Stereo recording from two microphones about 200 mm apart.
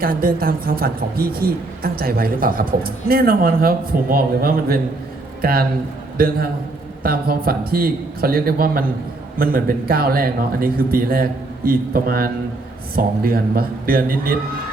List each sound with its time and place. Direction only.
0.0 s a woman's voice: 45° right (ahead or behind)